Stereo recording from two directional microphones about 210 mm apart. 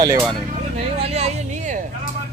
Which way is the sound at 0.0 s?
15° right (ahead or behind).